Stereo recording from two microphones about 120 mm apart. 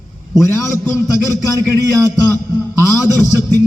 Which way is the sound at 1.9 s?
30° right (ahead or behind).